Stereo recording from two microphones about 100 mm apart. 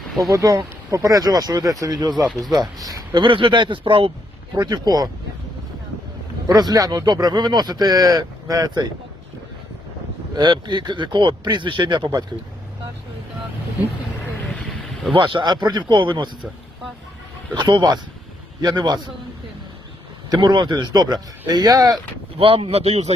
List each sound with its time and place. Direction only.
0.3 s speech: 35° right (ahead or behind)
2.2 s speech: centre (ahead or behind)
2.6 s speech: 40° right (ahead or behind); by 4.1 s 55° right (ahead or behind)
4.5 s speech: 40° right (ahead or behind)
6.5 s speech: 40° right (ahead or behind)
10.3 s speech: 45° right (ahead or behind)
14.6 s a sound: centre (ahead or behind)
15.1 s speech: 55° right (ahead or behind)
17.5 s speech: 50° right (ahead or behind)
20.3 s speech: 45° right (ahead or behind)
22.4 s speech: 65° right (ahead or behind); by 23.1 s 90° right